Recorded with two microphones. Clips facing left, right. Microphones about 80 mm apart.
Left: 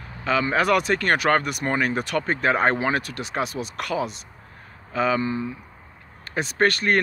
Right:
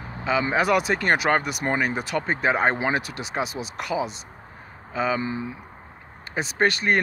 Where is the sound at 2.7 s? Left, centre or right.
Centre.